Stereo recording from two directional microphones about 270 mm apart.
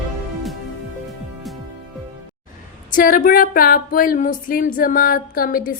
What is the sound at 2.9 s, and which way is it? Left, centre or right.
A woman's voice, left.